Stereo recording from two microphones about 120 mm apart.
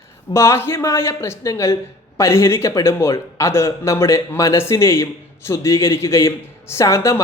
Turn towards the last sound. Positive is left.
turn(degrees=25)  # may be behind; listen again after turning